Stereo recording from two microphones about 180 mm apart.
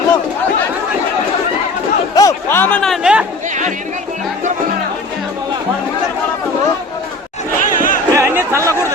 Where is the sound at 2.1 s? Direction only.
15° left (ahead or behind); by 3.2 s 5° right (ahead or behind).